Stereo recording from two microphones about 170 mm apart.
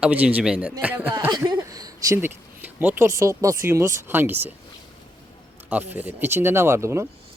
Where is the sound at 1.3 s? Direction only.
20° right (ahead or behind).